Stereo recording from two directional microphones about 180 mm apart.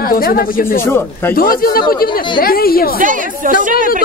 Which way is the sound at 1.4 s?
55° left (ahead or behind).